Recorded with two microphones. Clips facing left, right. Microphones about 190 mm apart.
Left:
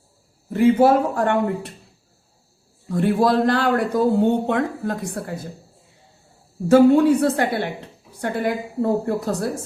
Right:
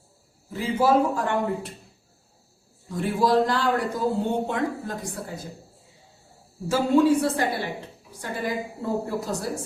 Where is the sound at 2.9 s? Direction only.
60° left (ahead or behind).